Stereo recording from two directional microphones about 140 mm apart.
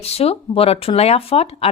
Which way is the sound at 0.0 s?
45° left (ahead or behind).